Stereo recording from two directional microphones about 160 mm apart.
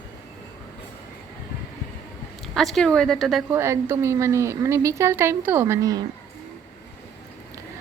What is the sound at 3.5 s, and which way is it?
A woman's voice, 20° right (ahead or behind).